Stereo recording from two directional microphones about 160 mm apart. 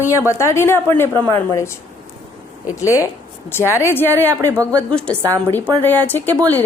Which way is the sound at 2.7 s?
20° left (ahead or behind).